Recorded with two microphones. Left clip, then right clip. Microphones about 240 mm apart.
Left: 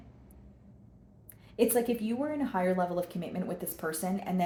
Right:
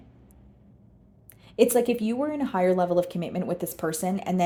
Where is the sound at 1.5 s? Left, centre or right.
Right.